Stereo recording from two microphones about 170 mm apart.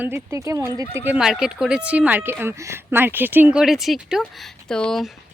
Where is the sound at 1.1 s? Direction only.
5° right (ahead or behind).